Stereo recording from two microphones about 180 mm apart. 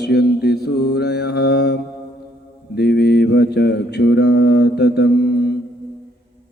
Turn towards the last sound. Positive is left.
turn(degrees=65)  # may be behind; listen again after turning